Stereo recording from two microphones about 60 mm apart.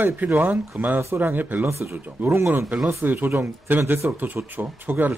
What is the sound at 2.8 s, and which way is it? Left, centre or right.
Speech, right.